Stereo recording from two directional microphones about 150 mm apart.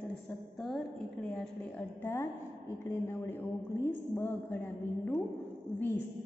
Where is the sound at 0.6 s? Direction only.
5° left (ahead or behind).